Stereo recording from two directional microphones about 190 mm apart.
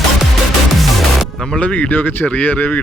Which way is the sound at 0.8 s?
Centre (ahead or behind).